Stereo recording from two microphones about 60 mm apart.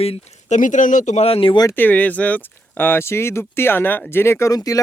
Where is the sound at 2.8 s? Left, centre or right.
Left.